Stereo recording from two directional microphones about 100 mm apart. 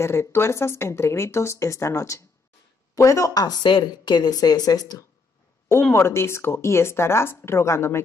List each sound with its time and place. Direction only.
0.0 s a woman's voice: 25° left (ahead or behind)
5.9 s speech: 25° left (ahead or behind)